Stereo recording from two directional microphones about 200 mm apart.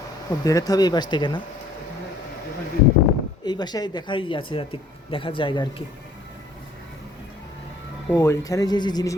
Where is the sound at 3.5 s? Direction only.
20° left (ahead or behind).